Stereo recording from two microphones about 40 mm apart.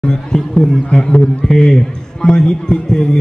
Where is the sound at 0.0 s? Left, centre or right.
Left.